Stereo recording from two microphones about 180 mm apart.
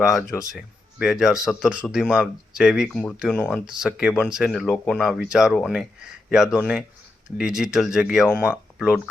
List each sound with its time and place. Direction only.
0.9 s speech: 5° right (ahead or behind)